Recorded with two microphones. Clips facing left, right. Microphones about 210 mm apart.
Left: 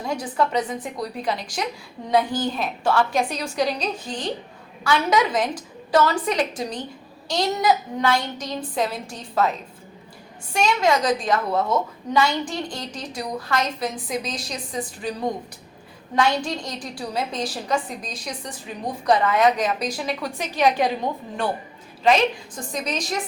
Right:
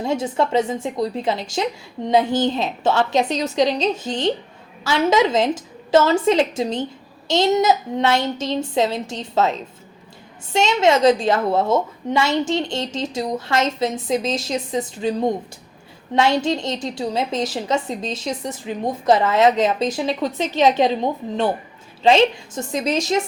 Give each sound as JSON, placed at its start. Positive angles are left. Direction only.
{"t": 0.0, "sound": "a woman's voice", "side_deg": -25}